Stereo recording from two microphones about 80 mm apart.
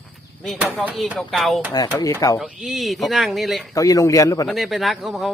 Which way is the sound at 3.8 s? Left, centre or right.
Left.